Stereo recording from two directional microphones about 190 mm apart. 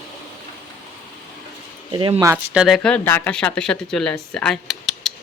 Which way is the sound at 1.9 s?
25° right (ahead or behind).